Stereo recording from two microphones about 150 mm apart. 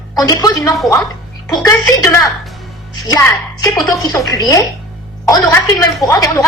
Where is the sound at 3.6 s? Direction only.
20° left (ahead or behind).